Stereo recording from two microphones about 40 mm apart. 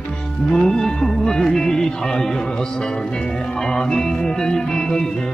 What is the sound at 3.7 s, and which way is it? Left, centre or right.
Music, centre.